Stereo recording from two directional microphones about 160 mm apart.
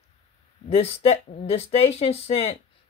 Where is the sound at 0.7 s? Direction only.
40° left (ahead or behind).